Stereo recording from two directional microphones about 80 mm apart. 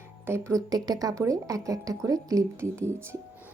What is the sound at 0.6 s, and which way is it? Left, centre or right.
Speech, right.